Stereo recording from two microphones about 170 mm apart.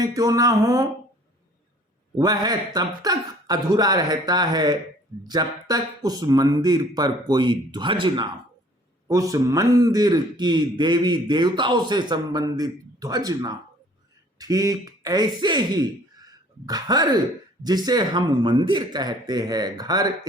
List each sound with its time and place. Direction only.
0.0 s a man's voice: 20° right (ahead or behind)
2.1 s a man's voice: 25° right (ahead or behind)